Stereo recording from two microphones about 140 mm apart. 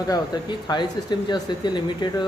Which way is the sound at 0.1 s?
30° left (ahead or behind).